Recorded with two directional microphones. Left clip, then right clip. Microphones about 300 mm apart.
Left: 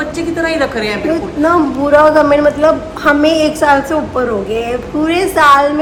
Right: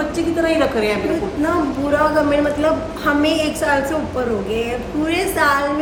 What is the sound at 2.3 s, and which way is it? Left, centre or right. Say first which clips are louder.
A woman's voice: left 7 dB; centre.